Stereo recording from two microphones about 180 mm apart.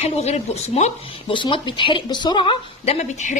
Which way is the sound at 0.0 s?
35° left (ahead or behind).